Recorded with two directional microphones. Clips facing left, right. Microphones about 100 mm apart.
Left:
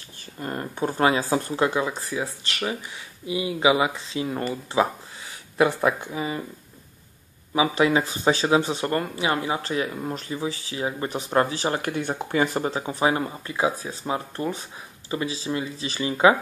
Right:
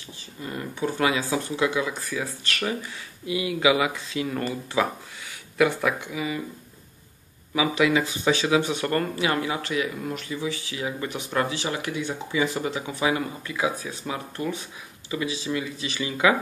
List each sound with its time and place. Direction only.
0.4 s speech: 45° left (ahead or behind)
7.5 s speech: 30° left (ahead or behind)